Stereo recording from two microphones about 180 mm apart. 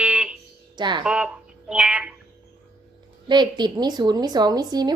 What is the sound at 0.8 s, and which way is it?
Speech, 25° right (ahead or behind).